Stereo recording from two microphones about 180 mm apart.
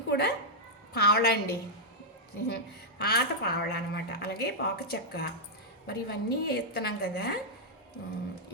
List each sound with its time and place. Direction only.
0.1 s a woman's voice: 65° left (ahead or behind)
3.0 s a woman's voice: 60° left (ahead or behind)